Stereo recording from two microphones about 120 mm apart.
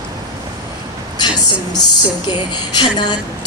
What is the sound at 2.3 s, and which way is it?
Speech, 35° left (ahead or behind).